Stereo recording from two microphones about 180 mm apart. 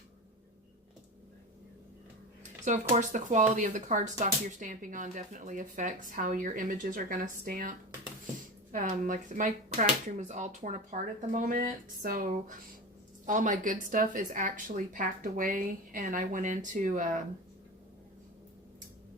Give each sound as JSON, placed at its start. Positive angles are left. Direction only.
{"t": 2.9, "sound": "speech", "side_deg": -40}